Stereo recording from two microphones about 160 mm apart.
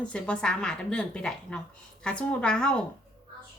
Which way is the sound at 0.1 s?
5° left (ahead or behind).